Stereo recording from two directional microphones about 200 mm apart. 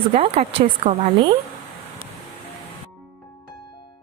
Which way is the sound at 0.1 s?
30° right (ahead or behind).